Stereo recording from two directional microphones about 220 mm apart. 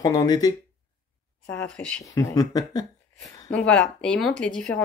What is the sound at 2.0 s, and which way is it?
Speech, 15° left (ahead or behind).